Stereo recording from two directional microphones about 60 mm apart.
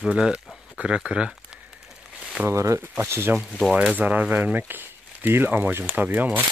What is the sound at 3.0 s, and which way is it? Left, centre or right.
Speech, right.